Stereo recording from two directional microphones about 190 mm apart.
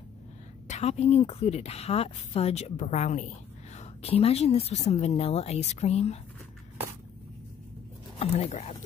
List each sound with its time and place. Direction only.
0.7 s a woman's voice: 35° left (ahead or behind)
8.2 s speech: 30° left (ahead or behind)